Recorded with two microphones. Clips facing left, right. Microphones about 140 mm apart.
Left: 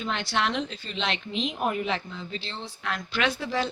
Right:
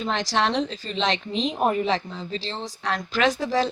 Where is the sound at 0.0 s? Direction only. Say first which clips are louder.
Right 4 dB; 35° right (ahead or behind).